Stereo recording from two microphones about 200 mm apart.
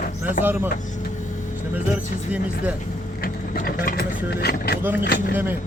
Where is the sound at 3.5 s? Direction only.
45° left (ahead or behind).